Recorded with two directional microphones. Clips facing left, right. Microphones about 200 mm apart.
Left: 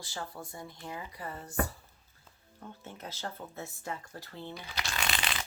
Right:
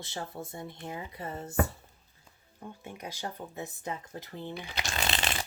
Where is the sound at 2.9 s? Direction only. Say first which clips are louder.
Right 2 dB; 15° right (ahead or behind).